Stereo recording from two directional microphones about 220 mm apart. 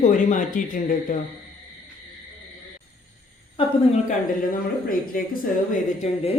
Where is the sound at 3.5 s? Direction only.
30° left (ahead or behind).